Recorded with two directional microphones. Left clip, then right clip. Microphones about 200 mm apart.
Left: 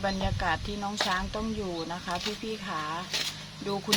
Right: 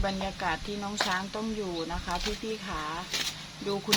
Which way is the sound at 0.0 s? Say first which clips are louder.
Left 1 dB; 15° left (ahead or behind).